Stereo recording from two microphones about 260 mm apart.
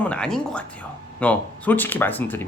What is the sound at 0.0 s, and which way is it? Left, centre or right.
Speech, centre.